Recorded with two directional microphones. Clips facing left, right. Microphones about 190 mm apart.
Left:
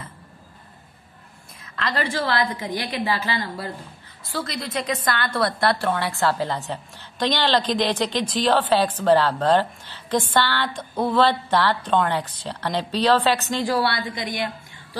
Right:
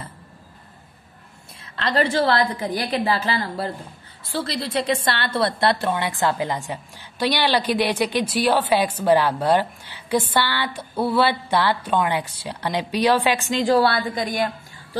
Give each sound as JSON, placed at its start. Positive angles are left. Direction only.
{"t": 1.6, "sound": "a woman's voice", "side_deg": -30}
{"t": 14.1, "sound": "a woman's voice", "side_deg": -45}